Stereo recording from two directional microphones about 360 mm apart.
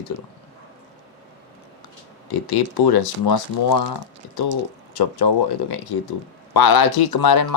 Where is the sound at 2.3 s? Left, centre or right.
Left.